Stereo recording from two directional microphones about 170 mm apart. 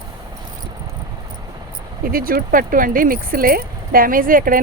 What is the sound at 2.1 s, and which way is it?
Speech, 60° right (ahead or behind).